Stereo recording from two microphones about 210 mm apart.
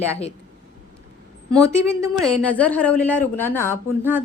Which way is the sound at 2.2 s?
5° left (ahead or behind).